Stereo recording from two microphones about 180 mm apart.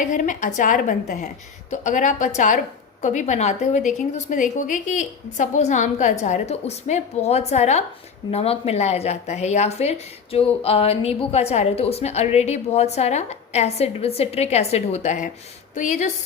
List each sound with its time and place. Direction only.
0.0 s a woman's voice: 45° left (ahead or behind)